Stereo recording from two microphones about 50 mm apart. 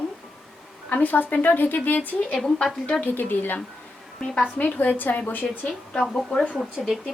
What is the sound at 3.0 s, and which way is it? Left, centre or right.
Speech, left.